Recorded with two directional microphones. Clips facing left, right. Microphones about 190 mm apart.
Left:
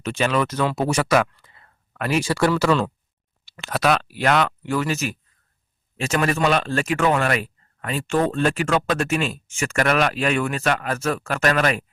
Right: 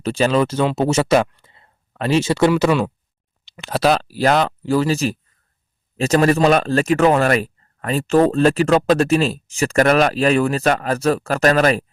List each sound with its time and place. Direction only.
0.0 s speech: 35° right (ahead or behind)
1.3 s a sound: 25° right (ahead or behind)
2.5 s speech: 15° right (ahead or behind)
3.4 s speech: 25° right (ahead or behind)